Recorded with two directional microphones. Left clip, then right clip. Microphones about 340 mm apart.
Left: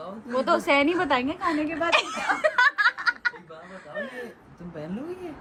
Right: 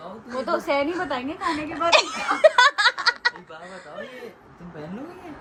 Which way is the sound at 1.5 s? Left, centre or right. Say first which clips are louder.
Right 5 dB; centre.